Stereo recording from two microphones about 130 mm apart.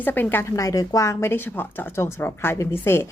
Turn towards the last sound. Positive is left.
turn(degrees=20)  # may be behind; listen again after turning